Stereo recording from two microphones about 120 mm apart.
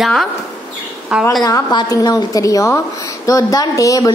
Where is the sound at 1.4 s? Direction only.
30° left (ahead or behind).